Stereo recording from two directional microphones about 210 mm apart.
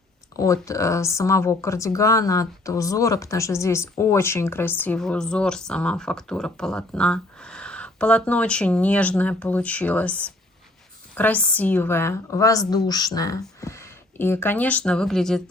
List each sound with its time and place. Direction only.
0.3 s speech: 15° left (ahead or behind)